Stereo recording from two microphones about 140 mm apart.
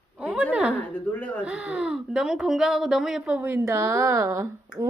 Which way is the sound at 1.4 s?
10° right (ahead or behind).